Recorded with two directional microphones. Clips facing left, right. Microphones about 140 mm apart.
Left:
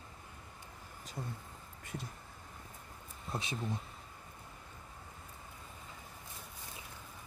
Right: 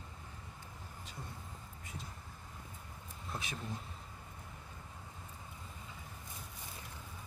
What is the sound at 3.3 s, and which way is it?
Speech, 30° left (ahead or behind).